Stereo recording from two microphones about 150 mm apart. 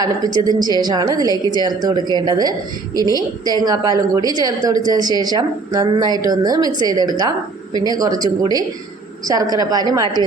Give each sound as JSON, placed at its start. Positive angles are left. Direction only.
{"t": 0.2, "sound": "a woman's voice", "side_deg": -25}